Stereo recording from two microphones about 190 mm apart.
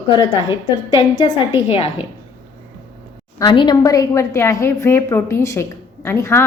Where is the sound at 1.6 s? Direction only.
30° left (ahead or behind).